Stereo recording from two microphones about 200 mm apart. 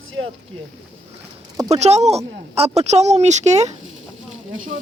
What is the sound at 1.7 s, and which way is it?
Speech, 35° right (ahead or behind).